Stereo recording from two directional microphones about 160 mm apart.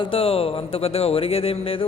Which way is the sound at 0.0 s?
35° left (ahead or behind).